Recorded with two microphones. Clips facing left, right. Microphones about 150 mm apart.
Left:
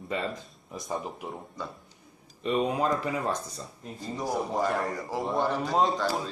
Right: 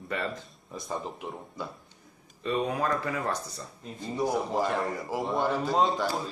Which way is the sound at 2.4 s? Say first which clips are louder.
Left 2 dB; 20° left (ahead or behind).